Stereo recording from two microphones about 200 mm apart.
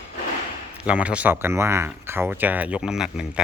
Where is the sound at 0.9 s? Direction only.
5° right (ahead or behind).